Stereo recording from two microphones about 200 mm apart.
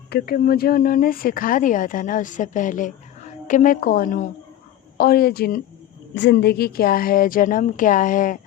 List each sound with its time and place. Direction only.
0.1 s speech: 50° left (ahead or behind)